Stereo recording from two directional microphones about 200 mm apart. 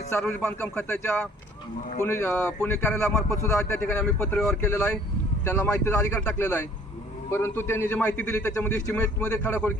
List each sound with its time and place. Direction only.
0.2 s speech: 5° left (ahead or behind)
3.2 s a man's voice: 15° left (ahead or behind)
3.6 s a man's voice: 5° left (ahead or behind)